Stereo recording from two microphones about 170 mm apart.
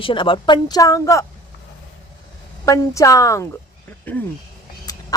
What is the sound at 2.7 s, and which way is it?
A woman's voice, 20° left (ahead or behind).